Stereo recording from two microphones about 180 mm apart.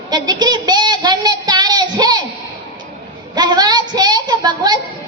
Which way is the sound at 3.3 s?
25° right (ahead or behind).